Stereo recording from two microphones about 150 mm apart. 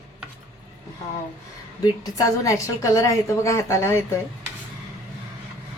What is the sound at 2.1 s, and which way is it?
A woman's voice, 20° left (ahead or behind).